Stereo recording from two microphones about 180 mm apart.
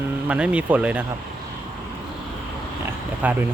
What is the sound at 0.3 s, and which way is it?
Speech, 5° right (ahead or behind).